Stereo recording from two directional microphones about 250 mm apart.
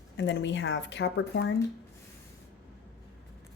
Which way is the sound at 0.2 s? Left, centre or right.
Left.